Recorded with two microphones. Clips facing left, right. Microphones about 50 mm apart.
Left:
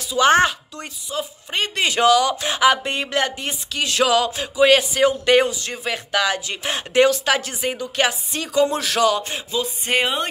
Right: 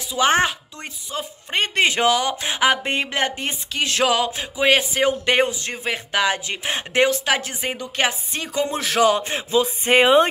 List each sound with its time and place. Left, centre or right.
0.1 s speech: centre
0.7 s speech: right